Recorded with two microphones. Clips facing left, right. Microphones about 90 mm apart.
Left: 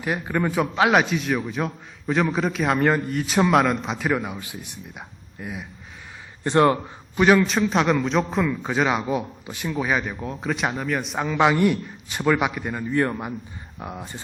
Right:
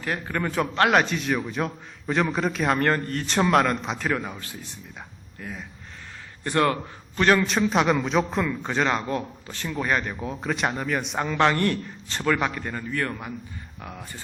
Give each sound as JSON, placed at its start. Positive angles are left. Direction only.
{"t": 0.0, "sound": "a man's voice", "side_deg": 15}
{"t": 7.2, "sound": "a man's voice", "side_deg": 5}